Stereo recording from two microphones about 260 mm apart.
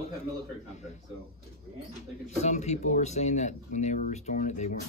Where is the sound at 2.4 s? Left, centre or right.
Left.